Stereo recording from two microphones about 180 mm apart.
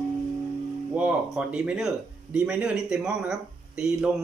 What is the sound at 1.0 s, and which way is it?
Speech, 5° right (ahead or behind).